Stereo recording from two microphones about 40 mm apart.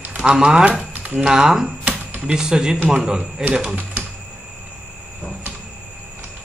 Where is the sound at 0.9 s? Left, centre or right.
Right.